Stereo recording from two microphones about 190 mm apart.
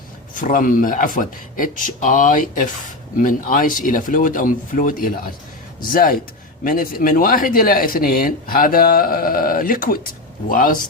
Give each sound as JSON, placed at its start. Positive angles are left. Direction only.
{"t": 0.3, "sound": "speech", "side_deg": 45}